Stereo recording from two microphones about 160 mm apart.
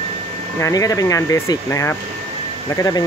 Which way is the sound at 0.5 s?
20° left (ahead or behind).